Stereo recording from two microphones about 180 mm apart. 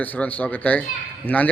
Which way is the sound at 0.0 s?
10° left (ahead or behind).